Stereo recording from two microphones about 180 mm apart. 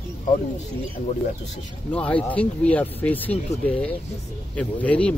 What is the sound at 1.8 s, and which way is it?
Speech, 5° left (ahead or behind).